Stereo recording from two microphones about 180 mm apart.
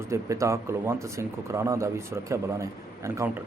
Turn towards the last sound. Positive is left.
turn(degrees=-10)  # may be behind; listen again after turning